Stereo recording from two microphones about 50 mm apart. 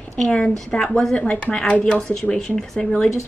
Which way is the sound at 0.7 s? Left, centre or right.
Centre.